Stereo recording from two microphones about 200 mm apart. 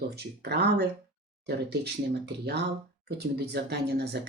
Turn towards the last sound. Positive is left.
turn(degrees=-55)  # may be behind; listen again after turning